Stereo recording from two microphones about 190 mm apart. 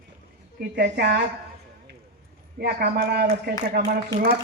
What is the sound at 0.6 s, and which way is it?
Speech, 55° right (ahead or behind).